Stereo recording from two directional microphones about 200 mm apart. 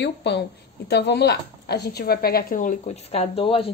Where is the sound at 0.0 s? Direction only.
60° left (ahead or behind).